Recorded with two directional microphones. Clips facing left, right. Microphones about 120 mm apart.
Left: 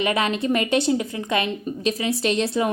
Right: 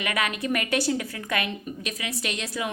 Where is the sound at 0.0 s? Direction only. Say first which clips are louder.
Left 6 dB; 25° left (ahead or behind).